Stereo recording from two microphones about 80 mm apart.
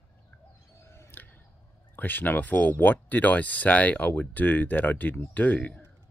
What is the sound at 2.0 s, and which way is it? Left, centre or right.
Speech, left.